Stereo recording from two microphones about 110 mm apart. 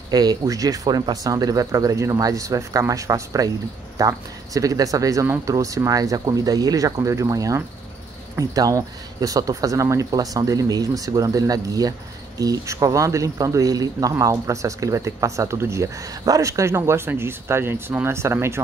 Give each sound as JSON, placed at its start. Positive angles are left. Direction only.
{"t": 0.1, "sound": "speech", "side_deg": -40}